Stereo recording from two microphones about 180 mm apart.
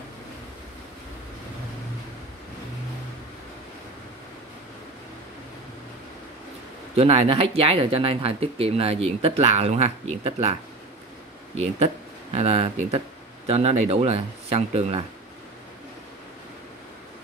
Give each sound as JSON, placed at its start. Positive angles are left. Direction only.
{"t": 7.0, "sound": "speech", "side_deg": -35}
{"t": 11.5, "sound": "speech", "side_deg": -35}